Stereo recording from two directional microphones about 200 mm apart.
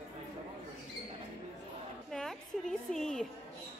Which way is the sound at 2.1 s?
5° left (ahead or behind).